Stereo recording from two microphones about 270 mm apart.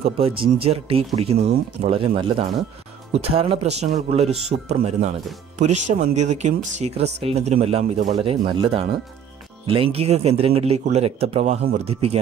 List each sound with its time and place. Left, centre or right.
0.4 s speech: right